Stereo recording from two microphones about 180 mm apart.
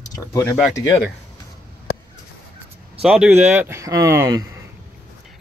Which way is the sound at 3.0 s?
5° right (ahead or behind).